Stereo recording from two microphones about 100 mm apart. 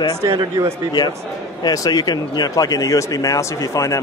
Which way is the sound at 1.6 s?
40° left (ahead or behind).